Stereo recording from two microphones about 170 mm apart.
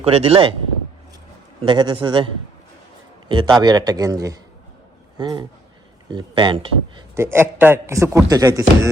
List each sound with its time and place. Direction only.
0.0 s speech: 35° right (ahead or behind)
1.6 s a man's voice: 25° right (ahead or behind)
7.2 s speech: 15° right (ahead or behind)